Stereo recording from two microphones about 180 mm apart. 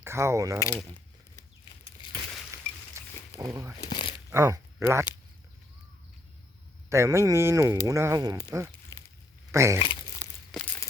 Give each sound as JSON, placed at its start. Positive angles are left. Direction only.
{"t": 0.0, "sound": "speech", "side_deg": -15}
{"t": 2.0, "sound": "a sound", "side_deg": 30}
{"t": 2.5, "sound": "chink", "side_deg": -15}
{"t": 3.0, "sound": "a sound", "side_deg": -15}
{"t": 3.4, "sound": "speech", "side_deg": -20}
{"t": 3.8, "sound": "a sound", "side_deg": 25}
{"t": 4.3, "sound": "speech", "side_deg": -15}
{"t": 6.9, "sound": "speech", "side_deg": -15}
{"t": 8.9, "sound": "a sound", "side_deg": 15}
{"t": 9.5, "sound": "speech", "side_deg": -15}
{"t": 9.7, "sound": "speech", "side_deg": 30}
{"t": 10.5, "sound": "crumpling", "side_deg": 5}